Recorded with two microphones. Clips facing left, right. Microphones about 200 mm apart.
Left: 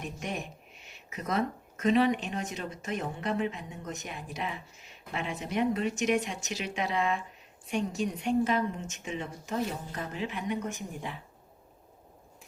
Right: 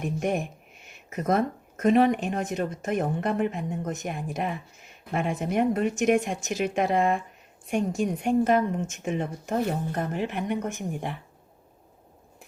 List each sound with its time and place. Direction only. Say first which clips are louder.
0.0 s speech: right 9 dB; 50° right (ahead or behind)